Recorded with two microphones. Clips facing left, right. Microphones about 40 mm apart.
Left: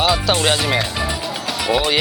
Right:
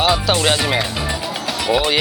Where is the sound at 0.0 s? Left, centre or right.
Centre.